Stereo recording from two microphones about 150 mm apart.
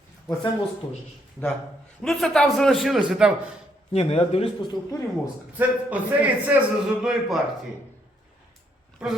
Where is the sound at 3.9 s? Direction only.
40° left (ahead or behind).